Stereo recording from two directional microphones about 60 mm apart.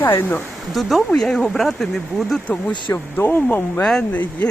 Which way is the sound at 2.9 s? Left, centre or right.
Left.